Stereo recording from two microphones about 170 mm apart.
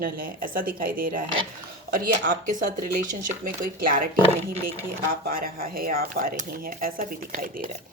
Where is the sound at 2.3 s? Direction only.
55° right (ahead or behind).